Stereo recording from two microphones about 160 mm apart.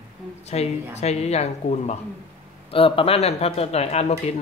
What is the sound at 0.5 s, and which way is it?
Speech, 45° left (ahead or behind).